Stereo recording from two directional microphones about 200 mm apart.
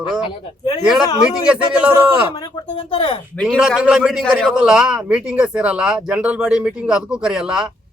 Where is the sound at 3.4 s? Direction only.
Centre (ahead or behind).